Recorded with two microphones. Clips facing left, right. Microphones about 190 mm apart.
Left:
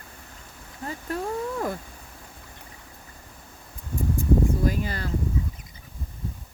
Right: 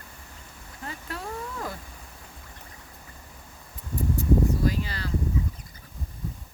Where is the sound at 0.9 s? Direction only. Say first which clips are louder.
Left 7 dB; 45° left (ahead or behind).